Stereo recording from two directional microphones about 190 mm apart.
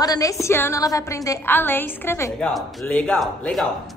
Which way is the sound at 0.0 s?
20° left (ahead or behind).